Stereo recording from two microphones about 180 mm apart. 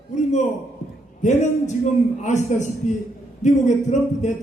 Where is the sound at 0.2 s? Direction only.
40° left (ahead or behind).